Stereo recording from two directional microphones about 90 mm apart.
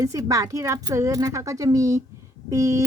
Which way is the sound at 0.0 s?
40° right (ahead or behind).